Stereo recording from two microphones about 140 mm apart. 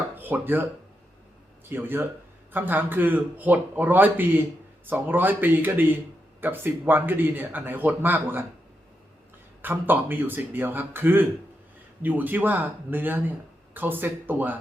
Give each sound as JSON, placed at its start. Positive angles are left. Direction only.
{"t": 0.2, "sound": "speech", "side_deg": -15}
{"t": 1.7, "sound": "speech", "side_deg": -15}
{"t": 9.6, "sound": "speech", "side_deg": -15}